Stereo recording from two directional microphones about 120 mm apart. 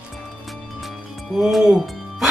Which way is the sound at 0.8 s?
Centre (ahead or behind).